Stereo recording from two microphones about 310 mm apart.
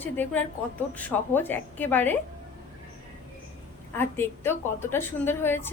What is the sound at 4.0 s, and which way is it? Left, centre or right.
A woman's voice, centre.